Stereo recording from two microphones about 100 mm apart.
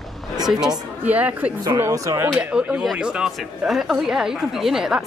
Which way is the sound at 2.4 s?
10° right (ahead or behind).